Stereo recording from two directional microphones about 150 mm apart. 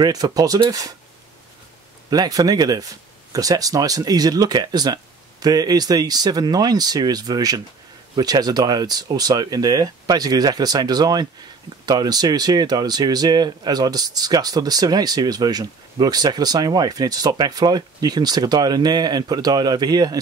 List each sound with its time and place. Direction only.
0.0 s speech: 25° right (ahead or behind)
2.0 s speech: 25° right (ahead or behind)